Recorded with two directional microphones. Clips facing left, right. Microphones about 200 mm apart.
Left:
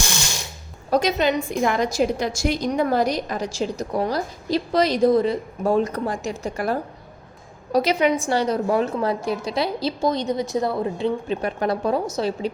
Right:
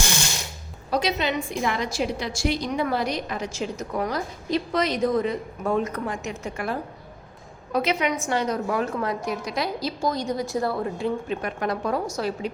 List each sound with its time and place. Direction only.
0.9 s a woman's voice: 45° left (ahead or behind); by 12.5 s 25° left (ahead or behind)